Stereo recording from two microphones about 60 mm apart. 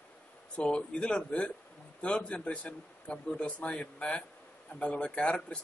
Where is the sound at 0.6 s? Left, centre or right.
Centre.